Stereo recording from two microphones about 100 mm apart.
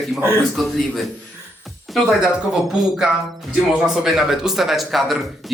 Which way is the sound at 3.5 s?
5° right (ahead or behind).